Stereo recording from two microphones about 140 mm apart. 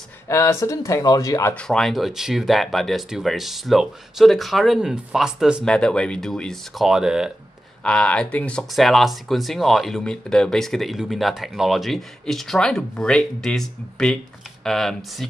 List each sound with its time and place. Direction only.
0.3 s speech: 20° left (ahead or behind)
1.5 s speech: 5° left (ahead or behind)
5.8 s speech: 5° left (ahead or behind)
7.8 s speech: 5° left (ahead or behind)